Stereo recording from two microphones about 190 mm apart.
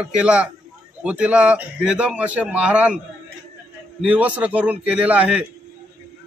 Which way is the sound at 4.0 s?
5° right (ahead or behind).